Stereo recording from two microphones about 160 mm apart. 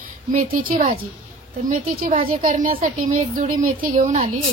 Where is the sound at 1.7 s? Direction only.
55° right (ahead or behind).